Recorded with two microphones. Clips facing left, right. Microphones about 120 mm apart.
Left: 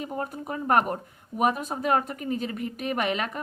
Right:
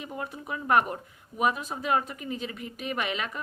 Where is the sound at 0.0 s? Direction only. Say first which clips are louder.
Left 4 dB; 45° left (ahead or behind).